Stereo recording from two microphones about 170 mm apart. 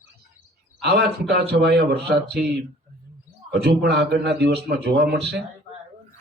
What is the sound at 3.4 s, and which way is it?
A man's voice, 75° right (ahead or behind).